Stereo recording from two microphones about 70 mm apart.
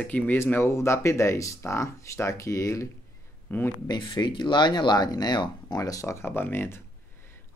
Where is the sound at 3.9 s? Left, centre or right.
Left.